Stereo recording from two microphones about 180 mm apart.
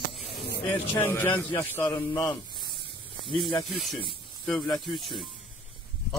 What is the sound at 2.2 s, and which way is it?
Snake, 25° left (ahead or behind).